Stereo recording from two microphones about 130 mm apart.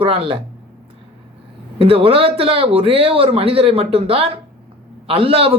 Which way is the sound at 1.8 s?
45° right (ahead or behind).